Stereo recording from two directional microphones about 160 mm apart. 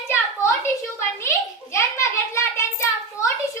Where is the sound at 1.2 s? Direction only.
15° left (ahead or behind).